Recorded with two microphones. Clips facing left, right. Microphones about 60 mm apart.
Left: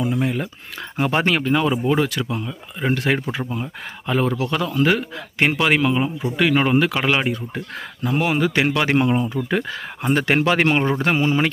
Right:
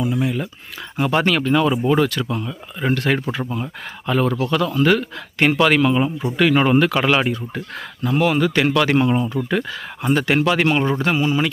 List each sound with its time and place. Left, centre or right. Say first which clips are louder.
0.0 s speech: right 1 dB; left
1.1 s a man's voice: right 2 dB; left
8.0 s a man's voice: right 2 dB; centre
9.5 s speech: right 1 dB; left